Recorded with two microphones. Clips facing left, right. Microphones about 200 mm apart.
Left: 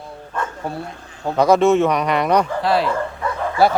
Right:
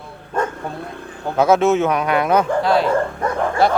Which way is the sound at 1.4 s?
Centre (ahead or behind).